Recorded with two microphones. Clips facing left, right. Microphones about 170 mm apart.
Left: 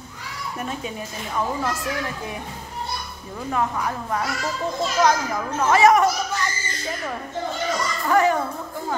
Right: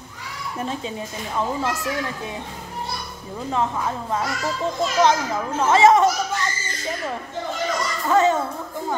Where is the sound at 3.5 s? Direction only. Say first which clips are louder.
Right 1 dB; 20° right (ahead or behind).